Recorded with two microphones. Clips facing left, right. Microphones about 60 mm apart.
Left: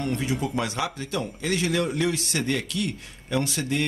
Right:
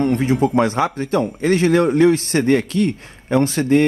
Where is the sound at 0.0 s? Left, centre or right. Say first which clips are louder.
Right 10 dB; right.